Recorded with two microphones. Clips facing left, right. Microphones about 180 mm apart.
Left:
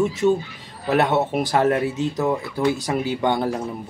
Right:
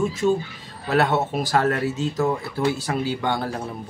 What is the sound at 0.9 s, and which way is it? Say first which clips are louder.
Speech: left 2 dB; 20° left (ahead or behind).